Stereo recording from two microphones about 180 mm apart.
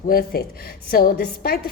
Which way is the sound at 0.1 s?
55° left (ahead or behind).